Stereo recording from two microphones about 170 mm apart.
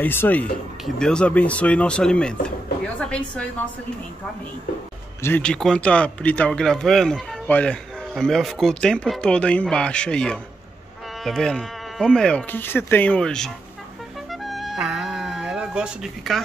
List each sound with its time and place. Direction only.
0.0 s speech: 10° left (ahead or behind)
2.4 s drawer open or close: 5° left (ahead or behind)
5.2 s speech: 10° left (ahead or behind)
14.3 s music: centre (ahead or behind)